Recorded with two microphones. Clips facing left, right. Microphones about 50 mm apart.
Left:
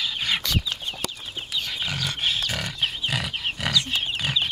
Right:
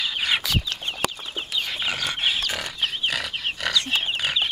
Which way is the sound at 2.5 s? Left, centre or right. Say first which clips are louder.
Even; centre.